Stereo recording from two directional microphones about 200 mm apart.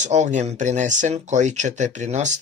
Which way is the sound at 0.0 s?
35° right (ahead or behind).